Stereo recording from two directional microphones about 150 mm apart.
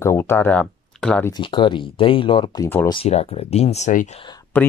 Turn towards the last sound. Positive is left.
turn(degrees=10)  # may be behind; listen again after turning